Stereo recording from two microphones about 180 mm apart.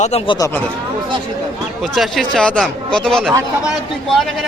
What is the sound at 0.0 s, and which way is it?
Speech, 35° left (ahead or behind).